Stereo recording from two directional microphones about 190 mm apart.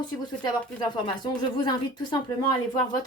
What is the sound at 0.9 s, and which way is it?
A woman's voice, 25° left (ahead or behind).